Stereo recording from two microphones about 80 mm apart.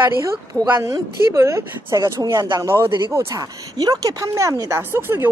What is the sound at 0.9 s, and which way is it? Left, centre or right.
Speech, right.